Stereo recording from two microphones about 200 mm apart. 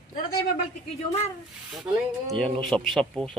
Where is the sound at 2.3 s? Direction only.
5° left (ahead or behind).